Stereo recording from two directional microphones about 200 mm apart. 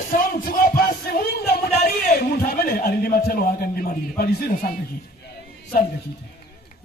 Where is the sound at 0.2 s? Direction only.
45° left (ahead or behind).